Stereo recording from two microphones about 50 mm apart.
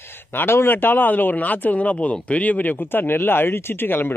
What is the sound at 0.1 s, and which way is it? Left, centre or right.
A man's voice, left.